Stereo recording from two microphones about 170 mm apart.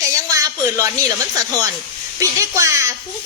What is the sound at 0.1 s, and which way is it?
Speech, 20° right (ahead or behind).